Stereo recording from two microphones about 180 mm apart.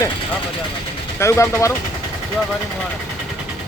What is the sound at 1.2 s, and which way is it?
Speech, 15° left (ahead or behind).